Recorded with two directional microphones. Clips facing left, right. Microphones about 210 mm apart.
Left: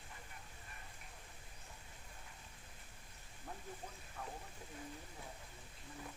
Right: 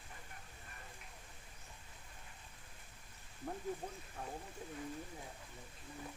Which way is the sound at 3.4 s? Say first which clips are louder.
Right 7 dB; 45° right (ahead or behind).